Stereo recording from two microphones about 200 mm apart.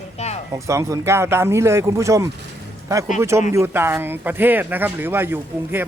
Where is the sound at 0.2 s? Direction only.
30° left (ahead or behind).